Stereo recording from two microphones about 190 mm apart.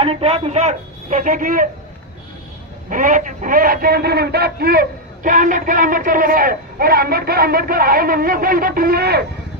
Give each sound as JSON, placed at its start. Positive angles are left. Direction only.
{"t": 0.0, "sound": "a woman's voice", "side_deg": -30}
{"t": 2.9, "sound": "speech", "side_deg": -45}